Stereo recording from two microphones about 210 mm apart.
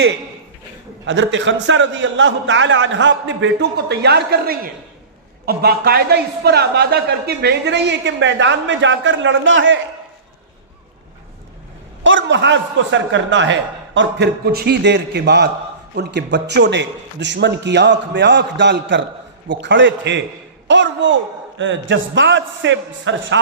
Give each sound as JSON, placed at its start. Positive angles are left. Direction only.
{"t": 1.0, "sound": "a man's voice", "side_deg": -60}
{"t": 12.0, "sound": "a man's voice", "side_deg": -60}